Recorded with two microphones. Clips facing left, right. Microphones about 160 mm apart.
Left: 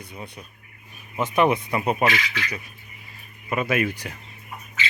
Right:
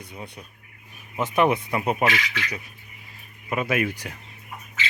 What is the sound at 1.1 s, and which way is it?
Speech, 5° right (ahead or behind).